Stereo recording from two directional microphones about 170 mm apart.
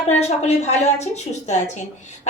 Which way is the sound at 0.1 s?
40° left (ahead or behind).